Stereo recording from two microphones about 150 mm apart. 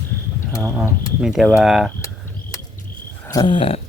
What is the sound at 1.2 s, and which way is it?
Speech, 5° right (ahead or behind).